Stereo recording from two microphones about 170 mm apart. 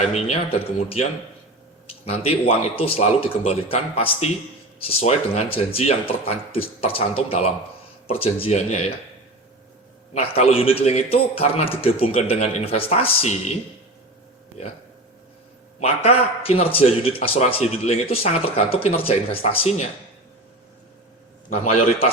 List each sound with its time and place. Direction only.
0.0 s a man's voice: 40° left (ahead or behind)
2.0 s a man's voice: 35° left (ahead or behind)
10.2 s a man's voice: 35° left (ahead or behind)
15.8 s a man's voice: 35° left (ahead or behind)
21.6 s a man's voice: 40° left (ahead or behind)